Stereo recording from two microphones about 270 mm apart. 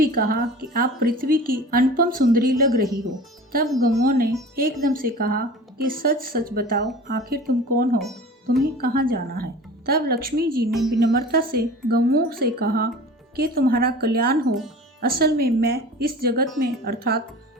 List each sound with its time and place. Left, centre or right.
0.0 s a woman's voice: right
7.9 s speech: centre
8.8 s a woman's voice: right
10.7 s speech: centre
11.3 s a woman's voice: right